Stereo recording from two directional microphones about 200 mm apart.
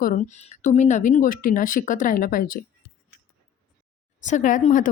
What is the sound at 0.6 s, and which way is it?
Speech, 35° left (ahead or behind).